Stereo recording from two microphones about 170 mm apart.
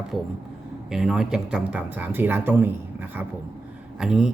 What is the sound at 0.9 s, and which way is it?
Speech, 5° right (ahead or behind).